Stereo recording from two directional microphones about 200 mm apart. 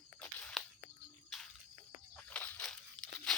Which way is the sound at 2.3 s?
10° left (ahead or behind).